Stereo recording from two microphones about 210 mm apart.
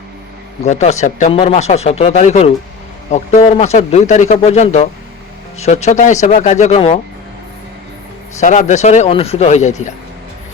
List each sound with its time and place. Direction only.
0.6 s speech: 30° left (ahead or behind)
8.4 s speech: 35° left (ahead or behind)